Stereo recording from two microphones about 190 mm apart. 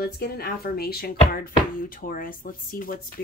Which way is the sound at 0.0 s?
50° left (ahead or behind).